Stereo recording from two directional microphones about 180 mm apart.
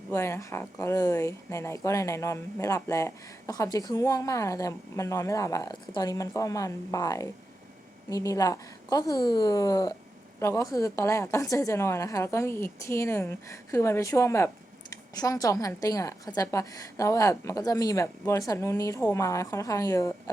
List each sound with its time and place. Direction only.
0.1 s a woman's voice: 15° left (ahead or behind)